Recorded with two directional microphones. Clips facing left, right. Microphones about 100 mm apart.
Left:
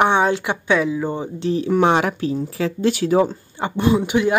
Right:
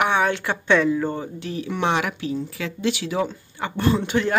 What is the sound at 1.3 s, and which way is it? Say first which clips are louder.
Speech: left 9 dB; 30° left (ahead or behind).